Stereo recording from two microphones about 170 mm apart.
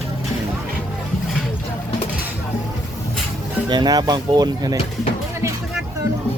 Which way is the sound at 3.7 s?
25° right (ahead or behind).